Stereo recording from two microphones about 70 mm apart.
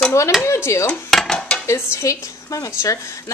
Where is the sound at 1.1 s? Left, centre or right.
Centre.